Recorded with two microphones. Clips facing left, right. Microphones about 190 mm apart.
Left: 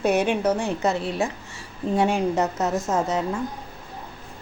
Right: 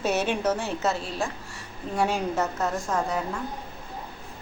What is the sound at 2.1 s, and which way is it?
A woman's voice, 20° left (ahead or behind).